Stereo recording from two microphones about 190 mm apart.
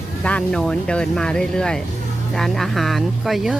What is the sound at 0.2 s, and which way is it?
Speech, 5° left (ahead or behind).